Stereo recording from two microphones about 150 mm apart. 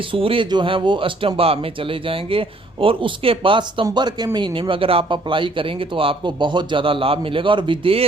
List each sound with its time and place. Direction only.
0.1 s speech: 35° right (ahead or behind)